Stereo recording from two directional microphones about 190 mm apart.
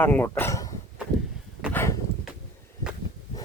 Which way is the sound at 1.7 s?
10° left (ahead or behind).